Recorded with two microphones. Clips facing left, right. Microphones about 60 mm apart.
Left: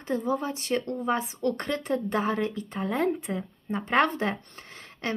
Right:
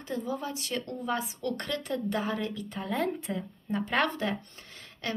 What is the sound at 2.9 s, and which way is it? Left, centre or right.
Speech, centre.